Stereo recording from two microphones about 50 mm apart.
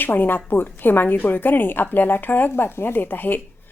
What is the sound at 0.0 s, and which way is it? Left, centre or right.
A woman's voice, left.